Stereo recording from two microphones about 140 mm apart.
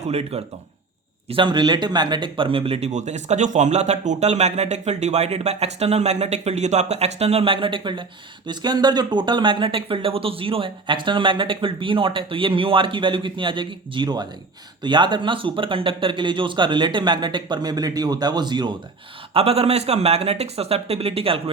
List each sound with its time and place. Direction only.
0.0 s speech: 45° right (ahead or behind)
1.3 s speech: 35° right (ahead or behind)
19.3 s speech: 45° right (ahead or behind)